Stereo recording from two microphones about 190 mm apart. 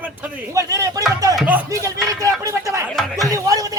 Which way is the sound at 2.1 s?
15° right (ahead or behind).